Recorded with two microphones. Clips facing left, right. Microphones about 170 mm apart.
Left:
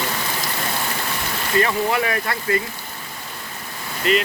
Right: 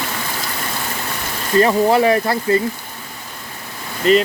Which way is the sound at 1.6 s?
35° right (ahead or behind).